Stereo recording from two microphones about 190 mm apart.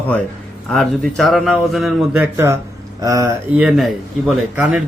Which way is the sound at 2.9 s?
20° right (ahead or behind).